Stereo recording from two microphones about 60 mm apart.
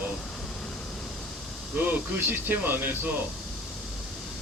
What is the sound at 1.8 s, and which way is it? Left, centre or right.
Speech, right.